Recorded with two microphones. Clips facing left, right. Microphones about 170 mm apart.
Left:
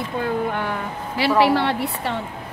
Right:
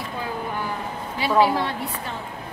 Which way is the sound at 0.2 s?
65° left (ahead or behind).